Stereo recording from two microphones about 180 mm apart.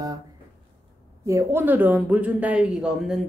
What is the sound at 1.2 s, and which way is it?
Speech, 15° right (ahead or behind).